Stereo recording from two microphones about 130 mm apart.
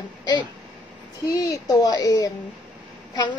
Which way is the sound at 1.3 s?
30° left (ahead or behind).